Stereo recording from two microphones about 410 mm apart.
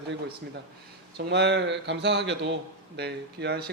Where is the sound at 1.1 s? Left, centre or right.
Right.